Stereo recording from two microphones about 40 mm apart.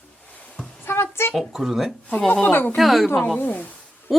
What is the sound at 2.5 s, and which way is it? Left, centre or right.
Speech, left.